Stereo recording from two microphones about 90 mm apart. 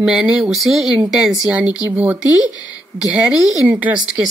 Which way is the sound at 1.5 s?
15° right (ahead or behind).